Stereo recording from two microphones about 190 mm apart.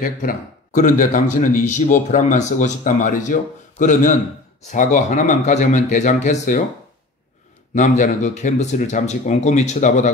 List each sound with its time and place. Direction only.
0.0 s a man's voice: 45° left (ahead or behind)
7.7 s speech: 40° left (ahead or behind)